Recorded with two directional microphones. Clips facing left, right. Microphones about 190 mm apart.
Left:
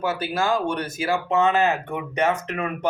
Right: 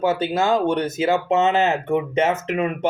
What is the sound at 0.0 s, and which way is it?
Speech, 25° right (ahead or behind).